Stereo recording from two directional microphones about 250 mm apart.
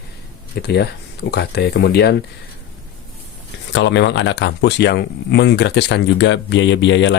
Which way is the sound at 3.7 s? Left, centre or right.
Left.